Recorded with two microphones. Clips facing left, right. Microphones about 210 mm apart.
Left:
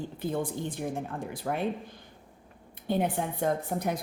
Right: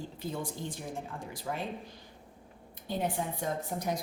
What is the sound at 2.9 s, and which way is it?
A woman's voice, 60° left (ahead or behind).